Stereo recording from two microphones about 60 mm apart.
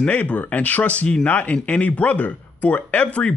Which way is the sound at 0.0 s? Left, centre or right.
Left.